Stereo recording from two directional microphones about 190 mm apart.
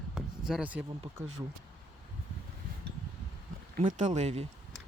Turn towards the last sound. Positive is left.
turn(degrees=-35)  # may be behind; listen again after turning